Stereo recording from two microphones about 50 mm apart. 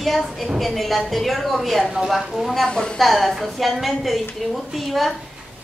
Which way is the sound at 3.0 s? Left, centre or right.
Centre.